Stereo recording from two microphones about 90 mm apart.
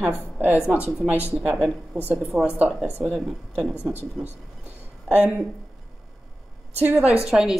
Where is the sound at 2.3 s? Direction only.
15° right (ahead or behind).